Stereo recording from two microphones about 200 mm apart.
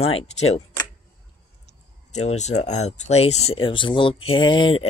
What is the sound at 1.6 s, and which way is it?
Speech, 35° left (ahead or behind).